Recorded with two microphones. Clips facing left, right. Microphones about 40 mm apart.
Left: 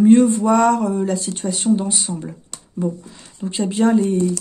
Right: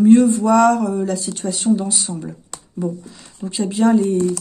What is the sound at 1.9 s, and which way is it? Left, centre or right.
Speech, centre.